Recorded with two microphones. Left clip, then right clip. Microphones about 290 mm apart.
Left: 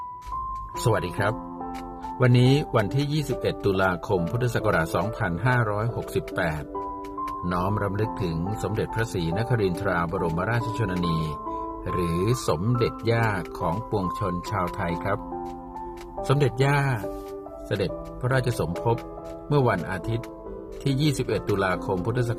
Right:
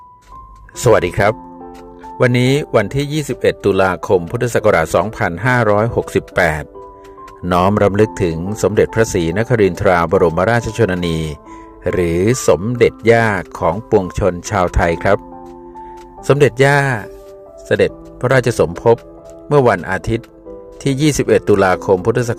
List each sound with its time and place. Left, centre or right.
0.9 s speech: right
16.2 s speech: right